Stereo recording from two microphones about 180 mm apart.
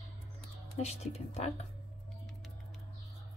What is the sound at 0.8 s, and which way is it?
Speech, 35° left (ahead or behind).